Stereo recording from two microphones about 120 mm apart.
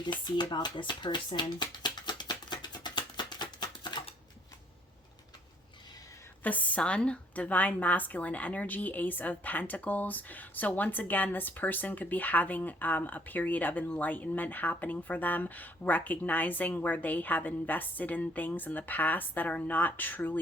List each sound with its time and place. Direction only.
0.0 s speech: 40° left (ahead or behind)
1.8 s music: 35° left (ahead or behind)
6.4 s a woman's voice: 15° left (ahead or behind)